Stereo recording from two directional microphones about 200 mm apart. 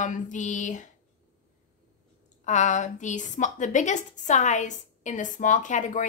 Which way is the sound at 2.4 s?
35° left (ahead or behind).